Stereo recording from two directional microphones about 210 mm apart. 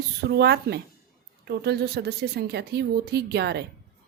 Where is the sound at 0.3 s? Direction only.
50° right (ahead or behind).